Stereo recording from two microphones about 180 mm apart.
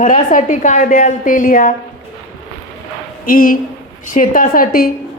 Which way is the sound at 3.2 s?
50° left (ahead or behind).